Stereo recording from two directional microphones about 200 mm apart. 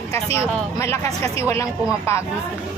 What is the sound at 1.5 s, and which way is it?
Speech, 15° left (ahead or behind).